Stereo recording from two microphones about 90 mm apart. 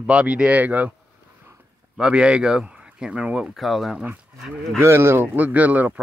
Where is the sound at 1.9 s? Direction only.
10° right (ahead or behind).